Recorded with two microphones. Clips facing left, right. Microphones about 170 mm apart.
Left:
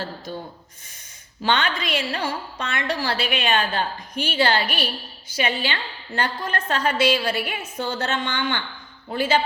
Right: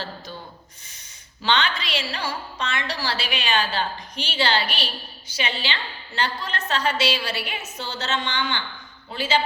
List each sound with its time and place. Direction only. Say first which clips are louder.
1.4 s a woman's voice: left 1 dB; 50° left (ahead or behind)